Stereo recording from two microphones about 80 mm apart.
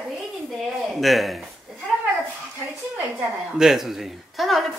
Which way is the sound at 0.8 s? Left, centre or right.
Centre.